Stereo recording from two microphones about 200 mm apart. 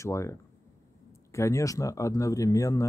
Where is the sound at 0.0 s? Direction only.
15° left (ahead or behind).